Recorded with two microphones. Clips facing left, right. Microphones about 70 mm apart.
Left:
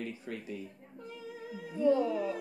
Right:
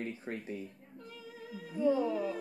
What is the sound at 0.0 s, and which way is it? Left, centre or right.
Speech, right.